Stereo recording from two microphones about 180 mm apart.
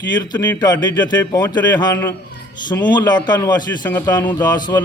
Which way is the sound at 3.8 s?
10° left (ahead or behind).